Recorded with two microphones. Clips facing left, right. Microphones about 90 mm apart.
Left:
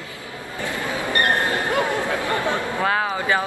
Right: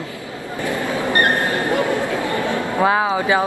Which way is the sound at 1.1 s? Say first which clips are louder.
Right 2 dB; 20° right (ahead or behind).